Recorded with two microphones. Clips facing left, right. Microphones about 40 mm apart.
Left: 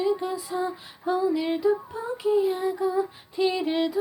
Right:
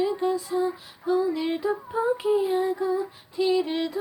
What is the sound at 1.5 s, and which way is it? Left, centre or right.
Female singing, centre.